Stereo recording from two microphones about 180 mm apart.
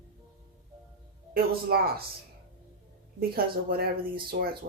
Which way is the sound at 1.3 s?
60° right (ahead or behind).